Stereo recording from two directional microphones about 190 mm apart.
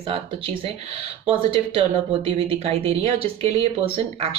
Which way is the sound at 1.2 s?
30° right (ahead or behind).